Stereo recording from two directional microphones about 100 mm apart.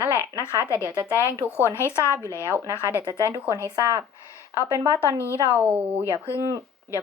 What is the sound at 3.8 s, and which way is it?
Speech, 30° right (ahead or behind).